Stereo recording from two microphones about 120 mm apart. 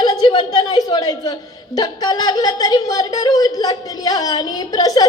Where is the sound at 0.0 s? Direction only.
35° left (ahead or behind).